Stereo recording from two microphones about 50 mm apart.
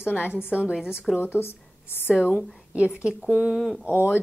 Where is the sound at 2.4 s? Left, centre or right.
Right.